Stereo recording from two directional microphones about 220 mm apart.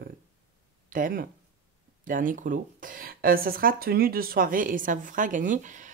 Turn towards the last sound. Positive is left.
turn(degrees=-35)  # may be behind; listen again after turning